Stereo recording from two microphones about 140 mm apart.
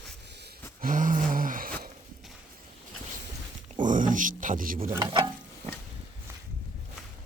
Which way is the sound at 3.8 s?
65° right (ahead or behind).